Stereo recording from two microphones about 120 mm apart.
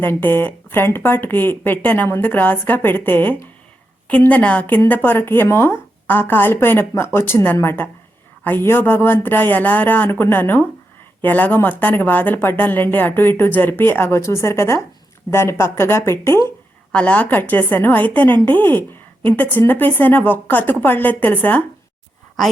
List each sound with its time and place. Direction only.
0.0 s a woman's voice: 15° left (ahead or behind)
16.9 s a woman's voice: 10° left (ahead or behind)